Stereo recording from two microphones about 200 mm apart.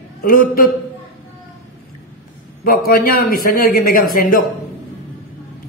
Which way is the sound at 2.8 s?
45° left (ahead or behind).